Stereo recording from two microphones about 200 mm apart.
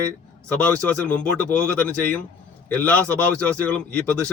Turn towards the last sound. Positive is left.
turn(degrees=5)  # may be behind; listen again after turning